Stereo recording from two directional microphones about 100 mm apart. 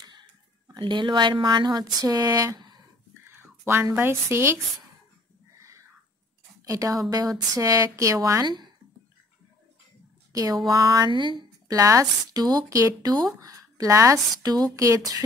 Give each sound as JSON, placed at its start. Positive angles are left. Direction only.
{"t": 0.7, "sound": "speech", "side_deg": -50}
{"t": 3.6, "sound": "a woman's voice", "side_deg": -25}
{"t": 6.6, "sound": "speech", "side_deg": -35}
{"t": 10.3, "sound": "speech", "side_deg": -35}
{"t": 11.1, "sound": "speech", "side_deg": -50}
{"t": 11.7, "sound": "speech", "side_deg": -30}